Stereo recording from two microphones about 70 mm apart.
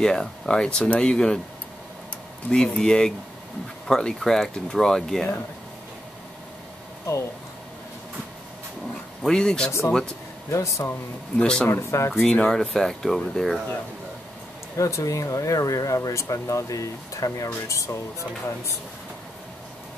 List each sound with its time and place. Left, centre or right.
0.0 s speech: centre
2.5 s speech: centre
9.2 s speech: centre
9.7 s speech: left
11.3 s speech: centre
11.7 s speech: left
12.1 s speech: centre
14.8 s speech: left